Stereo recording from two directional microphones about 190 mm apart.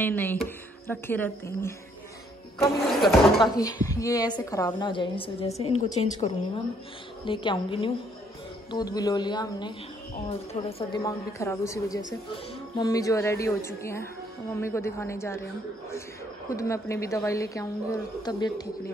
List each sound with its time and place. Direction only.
0.0 s a woman's voice: 10° left (ahead or behind)
2.9 s speech: centre (ahead or behind)
3.8 s a woman's voice: 15° left (ahead or behind); by 6.3 s 35° left (ahead or behind)
7.2 s a woman's voice: 25° left (ahead or behind)
11.1 s a woman's voice: 15° left (ahead or behind)
16.4 s a woman's voice: 15° left (ahead or behind)